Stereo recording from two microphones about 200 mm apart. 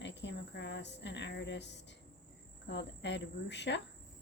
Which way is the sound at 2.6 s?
60° left (ahead or behind).